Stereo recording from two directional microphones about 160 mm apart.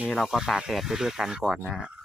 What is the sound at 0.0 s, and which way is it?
Speech, centre (ahead or behind).